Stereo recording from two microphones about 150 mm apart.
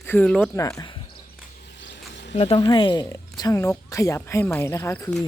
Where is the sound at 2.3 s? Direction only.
45° left (ahead or behind).